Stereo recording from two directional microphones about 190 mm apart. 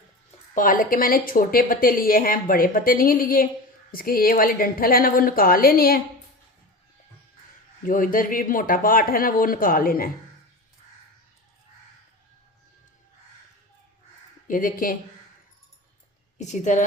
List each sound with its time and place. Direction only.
0.5 s a woman's voice: 45° left (ahead or behind)
7.9 s a woman's voice: 45° left (ahead or behind)
14.4 s a woman's voice: 45° left (ahead or behind)
16.4 s a woman's voice: 40° left (ahead or behind)